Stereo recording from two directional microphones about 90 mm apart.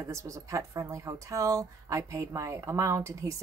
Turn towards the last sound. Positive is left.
turn(degrees=-35)  # may be behind; listen again after turning